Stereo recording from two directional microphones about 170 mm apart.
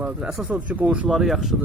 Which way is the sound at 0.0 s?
5° right (ahead or behind).